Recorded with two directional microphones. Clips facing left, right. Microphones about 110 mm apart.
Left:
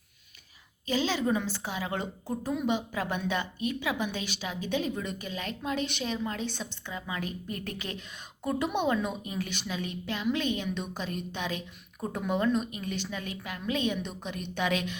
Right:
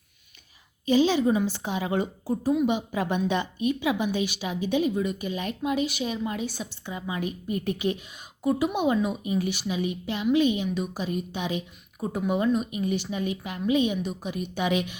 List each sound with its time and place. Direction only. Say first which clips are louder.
0.9 s speech: right 7 dB; 15° right (ahead or behind)